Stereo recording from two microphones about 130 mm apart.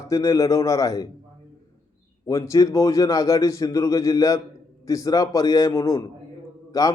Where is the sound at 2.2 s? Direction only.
25° left (ahead or behind).